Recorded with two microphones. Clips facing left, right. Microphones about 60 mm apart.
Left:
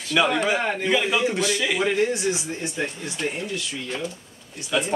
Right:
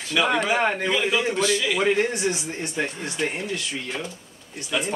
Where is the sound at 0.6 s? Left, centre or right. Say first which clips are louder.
Right 3 dB; right.